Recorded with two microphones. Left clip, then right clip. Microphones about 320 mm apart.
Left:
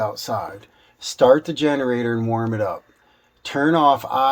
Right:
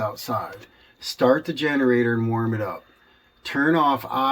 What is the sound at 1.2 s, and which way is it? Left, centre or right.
Speech, left.